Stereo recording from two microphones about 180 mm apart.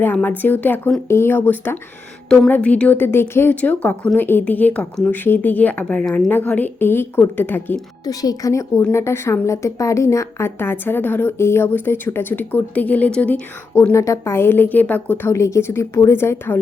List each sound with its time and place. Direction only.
0.0 s a woman's voice: 10° left (ahead or behind)